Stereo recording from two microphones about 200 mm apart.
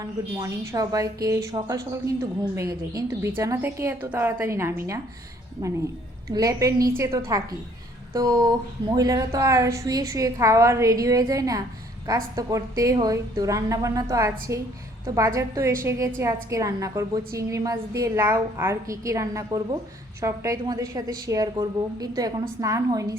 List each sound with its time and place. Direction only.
0.0 s a woman's voice: 15° right (ahead or behind)